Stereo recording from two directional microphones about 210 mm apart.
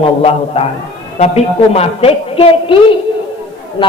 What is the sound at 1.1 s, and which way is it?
A woman's voice, 30° left (ahead or behind).